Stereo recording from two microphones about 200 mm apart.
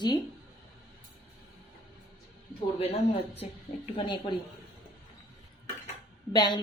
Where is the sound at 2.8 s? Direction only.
30° left (ahead or behind).